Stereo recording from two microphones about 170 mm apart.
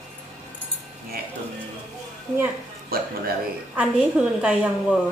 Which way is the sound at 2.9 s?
60° right (ahead or behind).